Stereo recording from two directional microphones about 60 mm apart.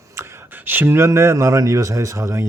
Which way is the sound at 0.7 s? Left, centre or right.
Right.